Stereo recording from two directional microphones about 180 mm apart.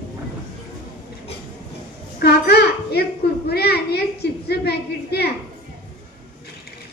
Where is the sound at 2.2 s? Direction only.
65° left (ahead or behind).